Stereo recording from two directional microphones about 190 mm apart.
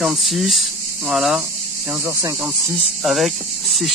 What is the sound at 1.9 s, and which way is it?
Speech, 15° right (ahead or behind).